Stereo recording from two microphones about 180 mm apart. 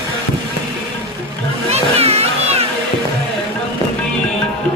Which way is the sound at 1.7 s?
35° right (ahead or behind).